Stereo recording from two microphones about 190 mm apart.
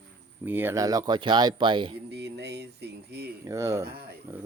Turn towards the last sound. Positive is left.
turn(degrees=-15)  # may be behind; listen again after turning